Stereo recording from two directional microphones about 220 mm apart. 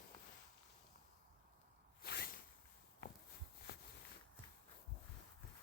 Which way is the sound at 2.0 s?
45° left (ahead or behind).